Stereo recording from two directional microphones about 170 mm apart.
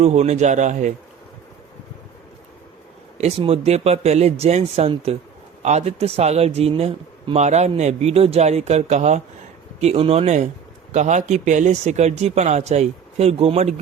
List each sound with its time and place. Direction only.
0.0 s speech: 40° right (ahead or behind)
3.2 s a man's voice: 40° right (ahead or behind)